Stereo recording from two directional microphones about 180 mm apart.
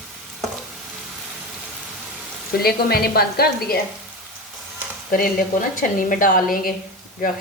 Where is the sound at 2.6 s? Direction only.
60° left (ahead or behind).